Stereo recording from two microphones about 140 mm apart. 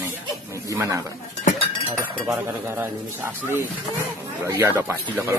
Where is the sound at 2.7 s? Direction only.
15° right (ahead or behind).